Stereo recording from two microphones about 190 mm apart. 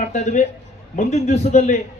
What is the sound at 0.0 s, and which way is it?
A man's voice, 40° left (ahead or behind).